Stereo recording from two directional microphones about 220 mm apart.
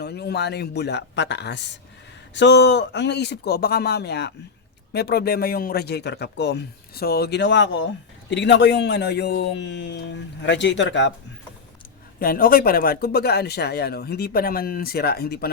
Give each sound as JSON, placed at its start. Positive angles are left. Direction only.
{"t": 0.0, "sound": "speech", "side_deg": 50}
{"t": 12.2, "sound": "speech", "side_deg": 40}